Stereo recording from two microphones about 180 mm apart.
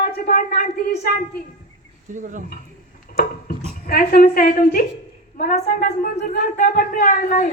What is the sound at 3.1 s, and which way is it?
A woman's voice, 55° left (ahead or behind).